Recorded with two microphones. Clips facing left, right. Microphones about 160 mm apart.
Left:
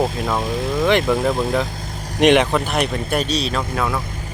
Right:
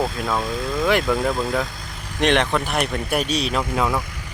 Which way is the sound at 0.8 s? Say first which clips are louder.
Left 3 dB; centre (ahead or behind).